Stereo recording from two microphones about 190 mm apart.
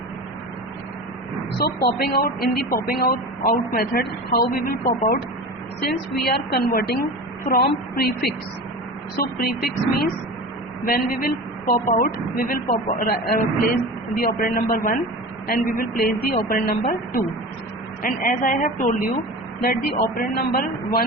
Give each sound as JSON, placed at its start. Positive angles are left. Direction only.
{"t": 1.5, "sound": "a woman's voice", "side_deg": 55}
{"t": 14.2, "sound": "a woman's voice", "side_deg": 50}
{"t": 18.0, "sound": "a woman's voice", "side_deg": 45}